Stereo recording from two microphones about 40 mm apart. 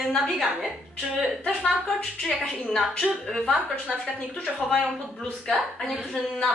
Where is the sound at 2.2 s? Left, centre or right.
Centre.